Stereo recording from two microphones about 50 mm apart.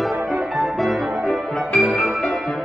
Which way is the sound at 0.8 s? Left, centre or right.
Centre.